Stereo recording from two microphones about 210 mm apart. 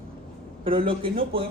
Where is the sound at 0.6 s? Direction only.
25° right (ahead or behind).